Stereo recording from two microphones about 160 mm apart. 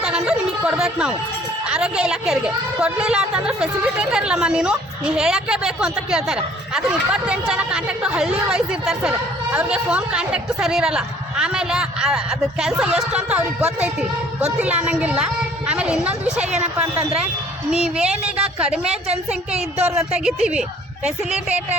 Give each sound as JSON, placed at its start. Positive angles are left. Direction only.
{"t": 0.0, "sound": "a sound", "side_deg": -5}
{"t": 1.6, "sound": "a woman's voice", "side_deg": -5}
{"t": 17.8, "sound": "a woman's voice", "side_deg": -5}
{"t": 18.9, "sound": "speech", "side_deg": -40}
{"t": 20.1, "sound": "a woman's voice", "side_deg": -5}